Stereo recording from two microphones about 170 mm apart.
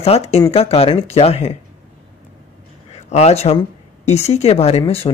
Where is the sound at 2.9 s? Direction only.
40° left (ahead or behind).